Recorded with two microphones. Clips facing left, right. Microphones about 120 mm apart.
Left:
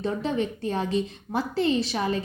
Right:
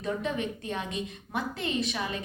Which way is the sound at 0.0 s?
30° left (ahead or behind).